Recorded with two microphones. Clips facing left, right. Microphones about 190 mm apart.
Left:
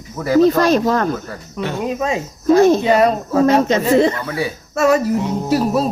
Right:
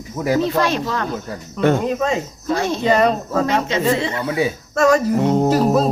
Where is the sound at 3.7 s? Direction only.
45° left (ahead or behind).